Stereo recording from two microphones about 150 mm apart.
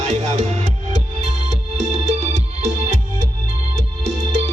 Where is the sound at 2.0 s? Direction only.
50° right (ahead or behind).